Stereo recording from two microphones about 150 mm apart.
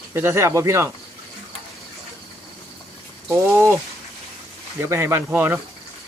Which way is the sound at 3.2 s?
20° right (ahead or behind).